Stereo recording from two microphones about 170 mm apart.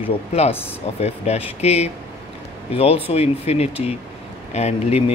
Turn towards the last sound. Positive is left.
turn(degrees=40)  # may be behind; listen again after turning